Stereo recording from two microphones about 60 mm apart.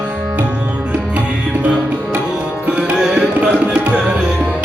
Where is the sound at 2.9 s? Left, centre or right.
Centre.